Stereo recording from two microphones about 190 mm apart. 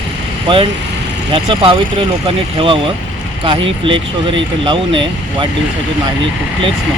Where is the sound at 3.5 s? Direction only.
30° right (ahead or behind).